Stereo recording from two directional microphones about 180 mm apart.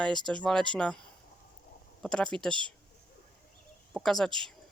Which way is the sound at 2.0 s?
5° left (ahead or behind).